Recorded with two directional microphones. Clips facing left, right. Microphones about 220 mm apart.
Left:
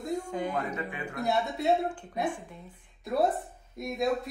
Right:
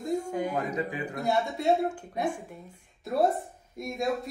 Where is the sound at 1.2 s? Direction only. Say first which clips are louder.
Right 1 dB; centre (ahead or behind).